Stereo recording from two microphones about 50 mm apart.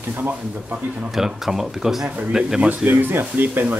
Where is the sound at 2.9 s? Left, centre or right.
Right.